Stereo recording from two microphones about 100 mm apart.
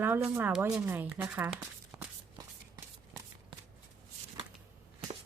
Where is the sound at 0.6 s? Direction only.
20° right (ahead or behind).